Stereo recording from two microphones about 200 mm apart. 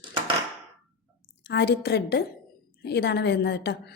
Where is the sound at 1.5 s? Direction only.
60° left (ahead or behind).